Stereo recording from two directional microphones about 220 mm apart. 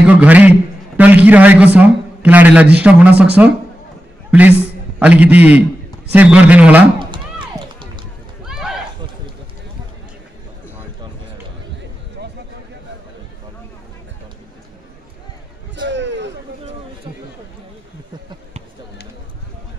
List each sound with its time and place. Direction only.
0.0 s a man's voice: 5° right (ahead or behind)
7.0 s music: 20° right (ahead or behind)
8.5 s run: centre (ahead or behind)
15.7 s a sound: 55° right (ahead or behind)